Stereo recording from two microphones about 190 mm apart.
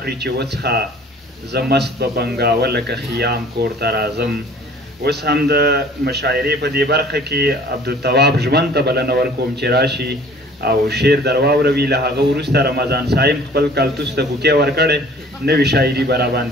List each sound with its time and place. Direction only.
0.0 s a man's voice: 60° right (ahead or behind)